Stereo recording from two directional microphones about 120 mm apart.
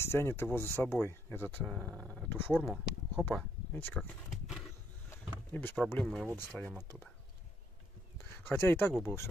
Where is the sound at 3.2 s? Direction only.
15° left (ahead or behind).